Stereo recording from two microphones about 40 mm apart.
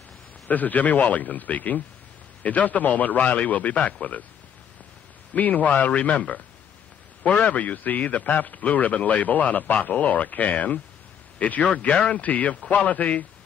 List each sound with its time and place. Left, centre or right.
0.5 s a man's voice: left
3.7 s speech: left
5.3 s a man's voice: left
11.9 s speech: left
12.2 s a man's voice: left